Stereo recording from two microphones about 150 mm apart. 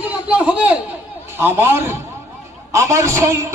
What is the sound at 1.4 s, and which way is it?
A man's voice, 15° right (ahead or behind).